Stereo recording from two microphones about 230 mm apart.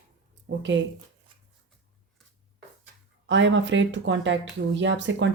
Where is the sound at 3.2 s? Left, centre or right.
Right.